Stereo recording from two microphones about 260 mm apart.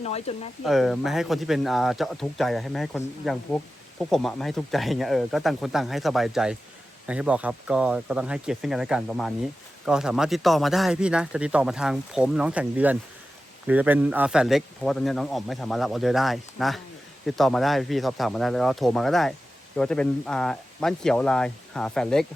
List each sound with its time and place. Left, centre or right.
0.0 s speech: left
0.6 s speech: centre